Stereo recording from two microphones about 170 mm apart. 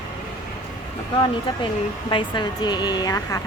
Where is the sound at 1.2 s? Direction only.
30° left (ahead or behind).